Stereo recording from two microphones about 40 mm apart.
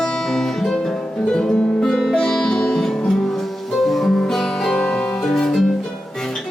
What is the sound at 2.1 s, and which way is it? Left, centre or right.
Music, centre.